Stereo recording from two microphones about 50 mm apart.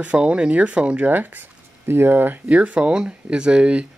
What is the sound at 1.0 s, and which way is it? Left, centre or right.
Speech, right.